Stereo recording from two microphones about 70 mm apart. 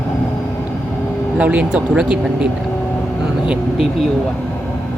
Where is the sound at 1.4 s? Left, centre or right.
Centre.